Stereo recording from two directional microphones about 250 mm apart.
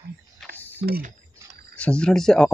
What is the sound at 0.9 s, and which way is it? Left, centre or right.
Speech, right.